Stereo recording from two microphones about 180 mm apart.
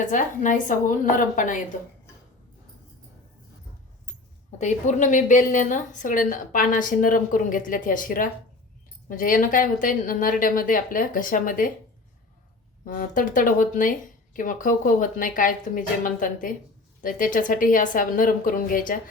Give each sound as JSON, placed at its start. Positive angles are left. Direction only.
{"t": 0.0, "sound": "a woman's voice", "side_deg": 45}
{"t": 4.5, "sound": "a woman's voice", "side_deg": 40}
{"t": 12.8, "sound": "a woman's voice", "side_deg": 45}